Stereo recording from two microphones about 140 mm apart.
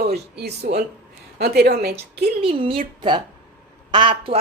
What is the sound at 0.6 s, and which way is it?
Speech, 90° right.